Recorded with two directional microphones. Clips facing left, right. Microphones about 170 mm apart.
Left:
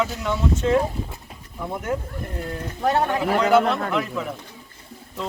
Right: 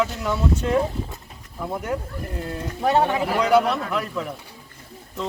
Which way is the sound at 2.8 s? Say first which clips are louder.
Right 1 dB; 10° right (ahead or behind).